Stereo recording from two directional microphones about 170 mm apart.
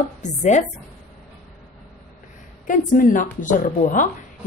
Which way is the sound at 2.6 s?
50° left (ahead or behind).